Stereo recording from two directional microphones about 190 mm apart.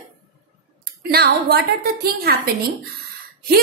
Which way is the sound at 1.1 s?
55° right (ahead or behind).